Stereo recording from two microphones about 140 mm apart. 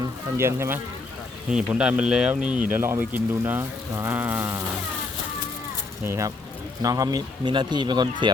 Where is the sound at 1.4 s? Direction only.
5° right (ahead or behind).